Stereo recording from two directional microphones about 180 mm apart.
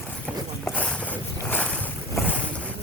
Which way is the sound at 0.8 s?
5° left (ahead or behind).